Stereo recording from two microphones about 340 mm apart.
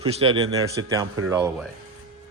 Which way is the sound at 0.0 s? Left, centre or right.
Centre.